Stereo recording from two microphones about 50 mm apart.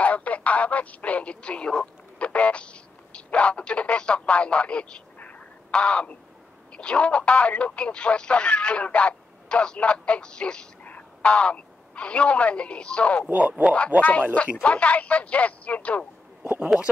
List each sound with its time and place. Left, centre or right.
0.0 s radio: left
6.7 s speech: left
13.3 s speech: right
14.3 s speech: left
16.4 s speech: right